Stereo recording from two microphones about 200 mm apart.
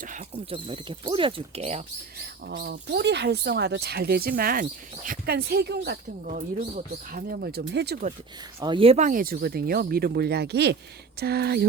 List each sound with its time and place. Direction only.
0.0 s speech: 40° right (ahead or behind)
0.5 s speech: 25° right (ahead or behind)
2.5 s speech: 50° right (ahead or behind)
6.2 s speech: 40° right (ahead or behind); by 7.9 s 55° right (ahead or behind)
8.6 s speech: 25° right (ahead or behind); by 11.6 s 50° right (ahead or behind)